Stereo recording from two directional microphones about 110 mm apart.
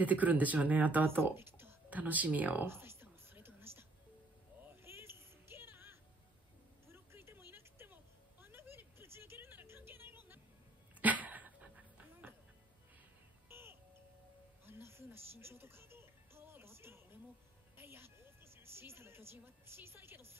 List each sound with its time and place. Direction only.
0.0 s speech: 15° right (ahead or behind)
4.6 s a sound: 20° right (ahead or behind)
11.0 s sneeze: 15° right (ahead or behind)
13.5 s music: 20° right (ahead or behind)